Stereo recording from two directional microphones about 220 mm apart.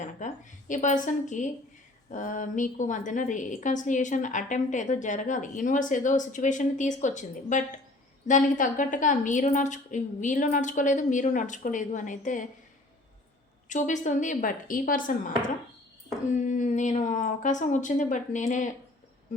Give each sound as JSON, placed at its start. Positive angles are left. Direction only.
{"t": 0.2, "sound": "a woman's voice", "side_deg": 35}
{"t": 13.7, "sound": "a woman's voice", "side_deg": 35}
{"t": 16.4, "sound": "a woman's voice", "side_deg": 35}